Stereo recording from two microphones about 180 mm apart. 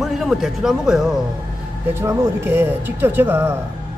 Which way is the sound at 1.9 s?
15° right (ahead or behind).